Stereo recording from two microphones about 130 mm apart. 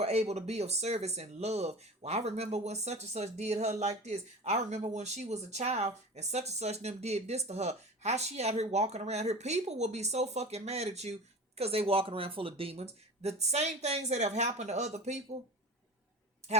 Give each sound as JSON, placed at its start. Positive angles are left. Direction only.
{"t": 0.0, "sound": "speech", "side_deg": -55}